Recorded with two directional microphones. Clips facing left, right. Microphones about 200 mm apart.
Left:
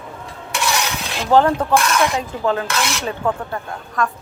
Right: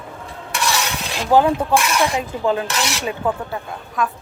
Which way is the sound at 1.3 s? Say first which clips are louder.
Left 1 dB; 10° right (ahead or behind).